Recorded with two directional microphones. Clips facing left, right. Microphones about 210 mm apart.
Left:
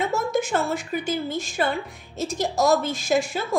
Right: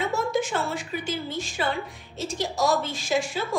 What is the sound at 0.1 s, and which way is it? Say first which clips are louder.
A woman's voice: left 2 dB; 45° left (ahead or behind).